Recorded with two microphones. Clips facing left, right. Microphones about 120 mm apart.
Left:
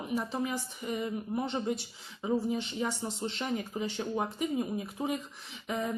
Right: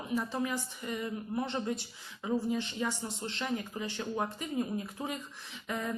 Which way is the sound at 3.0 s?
25° left (ahead or behind).